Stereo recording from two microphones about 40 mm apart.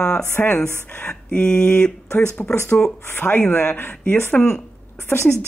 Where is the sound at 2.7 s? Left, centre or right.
Left.